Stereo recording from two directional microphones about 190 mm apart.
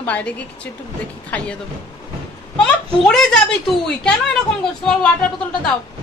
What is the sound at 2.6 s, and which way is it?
Speech, 5° left (ahead or behind).